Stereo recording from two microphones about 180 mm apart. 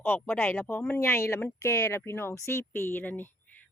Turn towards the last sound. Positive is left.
turn(degrees=10)  # may be behind; listen again after turning